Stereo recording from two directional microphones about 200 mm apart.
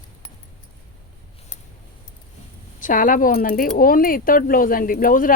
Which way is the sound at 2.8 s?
40° left (ahead or behind).